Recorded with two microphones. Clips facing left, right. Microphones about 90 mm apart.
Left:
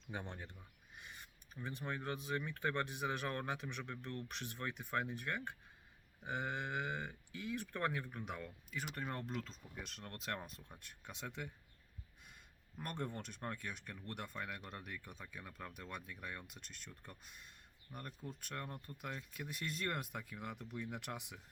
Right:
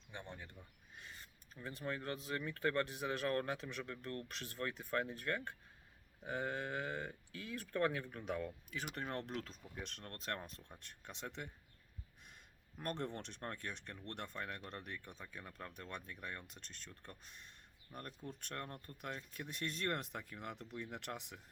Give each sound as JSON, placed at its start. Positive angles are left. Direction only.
{"t": 0.9, "sound": "speech", "side_deg": 15}
{"t": 7.8, "sound": "speech", "side_deg": 5}
{"t": 8.4, "sound": "speech", "side_deg": 0}
{"t": 12.8, "sound": "speech", "side_deg": 5}